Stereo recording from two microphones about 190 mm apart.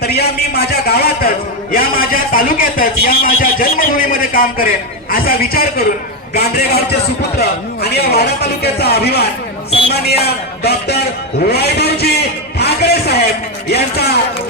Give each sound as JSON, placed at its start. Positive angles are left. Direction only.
{"t": 0.0, "sound": "a man's voice", "side_deg": 60}
{"t": 11.4, "sound": "a sound", "side_deg": 55}
{"t": 13.7, "sound": "speech", "side_deg": 55}